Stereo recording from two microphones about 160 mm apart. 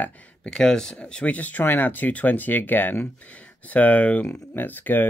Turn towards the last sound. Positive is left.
turn(degrees=10)  # may be behind; listen again after turning